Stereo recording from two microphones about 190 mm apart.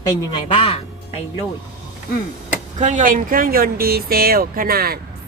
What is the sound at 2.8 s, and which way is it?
Speech, 40° right (ahead or behind).